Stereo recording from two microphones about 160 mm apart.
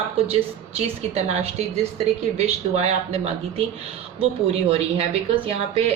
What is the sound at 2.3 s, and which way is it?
Speech, 45° right (ahead or behind).